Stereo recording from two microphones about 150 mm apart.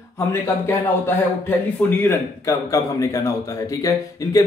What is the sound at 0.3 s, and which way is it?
A man's voice, 15° left (ahead or behind).